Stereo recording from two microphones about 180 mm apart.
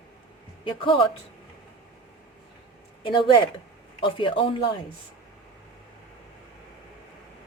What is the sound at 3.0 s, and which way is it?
Speech, 30° left (ahead or behind).